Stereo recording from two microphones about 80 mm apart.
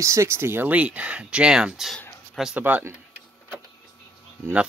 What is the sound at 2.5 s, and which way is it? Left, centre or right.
Speech, centre.